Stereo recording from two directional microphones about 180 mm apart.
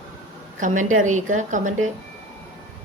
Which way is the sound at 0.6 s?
45° right (ahead or behind).